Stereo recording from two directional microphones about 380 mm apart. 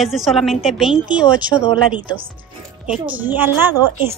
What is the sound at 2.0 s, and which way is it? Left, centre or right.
Speech, right.